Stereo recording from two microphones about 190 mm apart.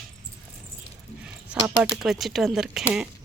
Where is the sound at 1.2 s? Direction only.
5° right (ahead or behind).